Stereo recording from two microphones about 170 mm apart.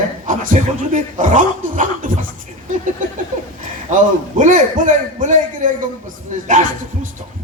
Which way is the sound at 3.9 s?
50° right (ahead or behind).